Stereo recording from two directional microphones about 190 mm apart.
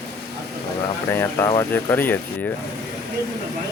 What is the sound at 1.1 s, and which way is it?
Speech, 15° left (ahead or behind).